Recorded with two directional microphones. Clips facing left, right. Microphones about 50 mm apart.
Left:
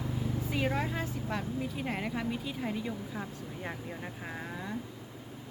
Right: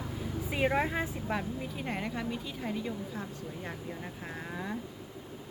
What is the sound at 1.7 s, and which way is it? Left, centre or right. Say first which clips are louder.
Speech: left 1 dB; centre.